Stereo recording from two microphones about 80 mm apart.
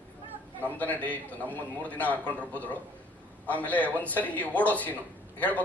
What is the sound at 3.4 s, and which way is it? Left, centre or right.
A man's voice, left.